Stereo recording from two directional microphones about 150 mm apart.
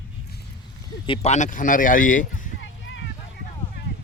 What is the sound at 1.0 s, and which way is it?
Speech, 35° left (ahead or behind).